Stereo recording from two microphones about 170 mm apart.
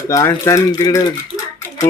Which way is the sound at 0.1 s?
15° left (ahead or behind).